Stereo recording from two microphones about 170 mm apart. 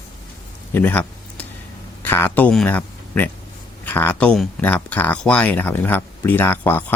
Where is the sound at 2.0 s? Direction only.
10° left (ahead or behind).